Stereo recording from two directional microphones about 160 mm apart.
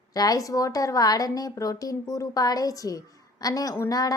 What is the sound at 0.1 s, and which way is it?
A woman's voice, 25° left (ahead or behind).